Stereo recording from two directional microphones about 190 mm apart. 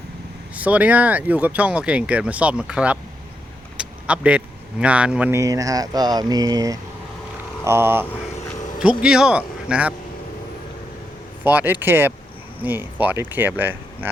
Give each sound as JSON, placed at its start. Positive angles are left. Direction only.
{"t": 0.5, "sound": "speech", "side_deg": -5}
{"t": 11.4, "sound": "speech", "side_deg": -10}